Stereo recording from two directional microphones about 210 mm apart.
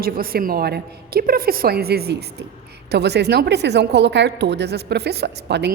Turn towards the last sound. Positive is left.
turn(degrees=-55)  # may be behind; listen again after turning